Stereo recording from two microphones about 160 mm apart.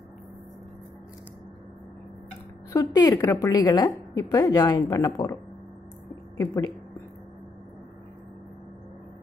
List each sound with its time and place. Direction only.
2.7 s a woman's voice: 20° left (ahead or behind)